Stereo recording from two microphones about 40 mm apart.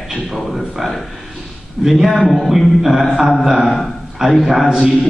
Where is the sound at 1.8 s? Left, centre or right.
Centre.